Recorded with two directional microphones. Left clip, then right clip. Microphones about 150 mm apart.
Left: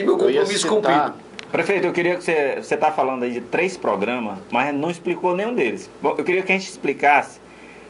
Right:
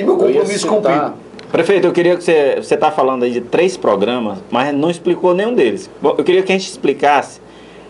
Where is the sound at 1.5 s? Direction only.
5° right (ahead or behind).